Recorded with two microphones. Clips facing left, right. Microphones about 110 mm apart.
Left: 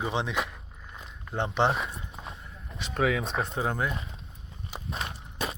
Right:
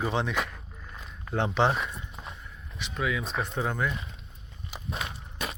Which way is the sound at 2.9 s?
65° left (ahead or behind).